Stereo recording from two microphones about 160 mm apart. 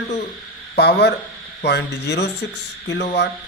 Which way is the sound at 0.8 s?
90° left.